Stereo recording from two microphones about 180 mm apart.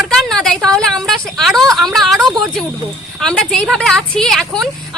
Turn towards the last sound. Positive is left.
turn(degrees=0)  # may be behind; listen again after turning